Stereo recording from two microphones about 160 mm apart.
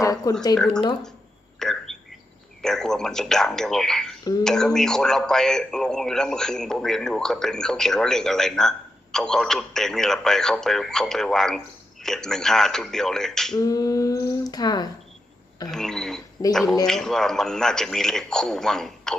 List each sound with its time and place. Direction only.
0.0 s speech: 20° left (ahead or behind)
0.5 s a man's voice: 5° left (ahead or behind)
1.5 s hiccup: 5° left (ahead or behind)
2.6 s a man's voice: 5° left (ahead or behind)
13.6 s a sound: 20° left (ahead or behind)
15.6 s a man's voice: 5° left (ahead or behind)